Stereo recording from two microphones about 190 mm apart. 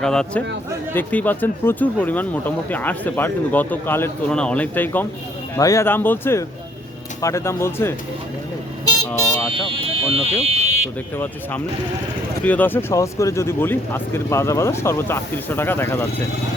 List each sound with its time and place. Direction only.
0.0 s speech: 5° left (ahead or behind)
9.5 s speech: 30° right (ahead or behind)
12.4 s speech: 10° left (ahead or behind)